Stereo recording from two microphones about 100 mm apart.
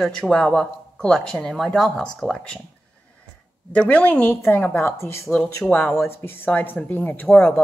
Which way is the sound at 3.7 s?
15° left (ahead or behind).